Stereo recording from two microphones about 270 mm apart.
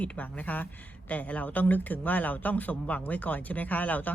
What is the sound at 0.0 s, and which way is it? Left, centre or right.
A woman's voice, centre.